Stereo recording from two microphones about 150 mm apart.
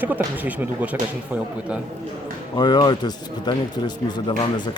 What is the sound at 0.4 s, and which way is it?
Speech, 10° right (ahead or behind).